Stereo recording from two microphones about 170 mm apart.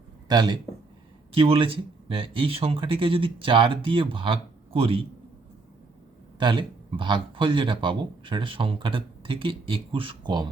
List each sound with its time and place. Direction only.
0.3 s a man's voice: 25° right (ahead or behind)
6.4 s a man's voice: 30° right (ahead or behind)